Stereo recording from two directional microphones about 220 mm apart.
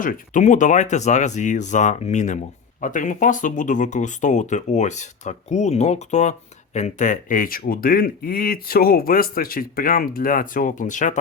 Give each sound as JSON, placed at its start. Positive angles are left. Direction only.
{"t": 0.0, "sound": "speech", "side_deg": 35}